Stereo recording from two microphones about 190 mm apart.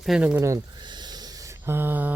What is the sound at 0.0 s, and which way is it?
Speech, 5° right (ahead or behind).